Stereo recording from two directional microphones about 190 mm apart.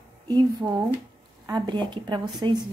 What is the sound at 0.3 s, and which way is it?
Speech, 20° right (ahead or behind).